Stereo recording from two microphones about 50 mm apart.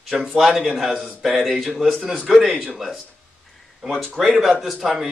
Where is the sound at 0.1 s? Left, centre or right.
Centre.